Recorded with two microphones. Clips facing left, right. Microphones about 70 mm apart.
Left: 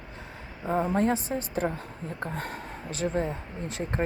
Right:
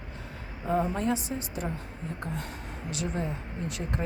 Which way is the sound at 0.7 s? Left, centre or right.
Left.